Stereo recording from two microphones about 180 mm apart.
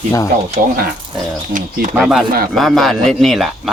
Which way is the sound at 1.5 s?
45° right (ahead or behind).